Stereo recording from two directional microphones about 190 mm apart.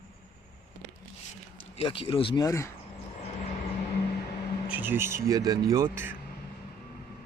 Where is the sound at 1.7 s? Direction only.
30° left (ahead or behind).